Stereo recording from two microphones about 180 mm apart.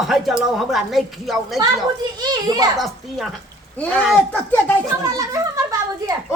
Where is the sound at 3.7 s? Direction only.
10° left (ahead or behind).